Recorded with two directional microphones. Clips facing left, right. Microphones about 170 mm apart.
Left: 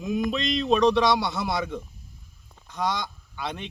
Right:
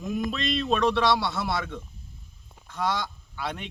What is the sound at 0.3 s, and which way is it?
A man's voice, 20° left (ahead or behind).